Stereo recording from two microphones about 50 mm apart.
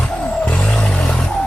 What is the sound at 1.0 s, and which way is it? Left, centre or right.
Music, centre.